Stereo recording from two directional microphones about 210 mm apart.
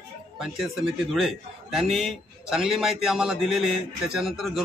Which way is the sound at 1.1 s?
Centre (ahead or behind).